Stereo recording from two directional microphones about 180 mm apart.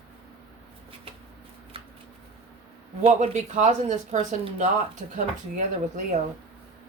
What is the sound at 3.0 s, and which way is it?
Speech, 40° right (ahead or behind).